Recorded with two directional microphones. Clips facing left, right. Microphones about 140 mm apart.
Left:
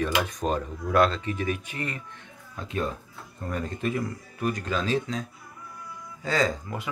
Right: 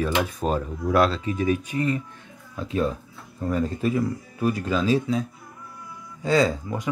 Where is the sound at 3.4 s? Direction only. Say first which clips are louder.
Right 6 dB; 5° right (ahead or behind).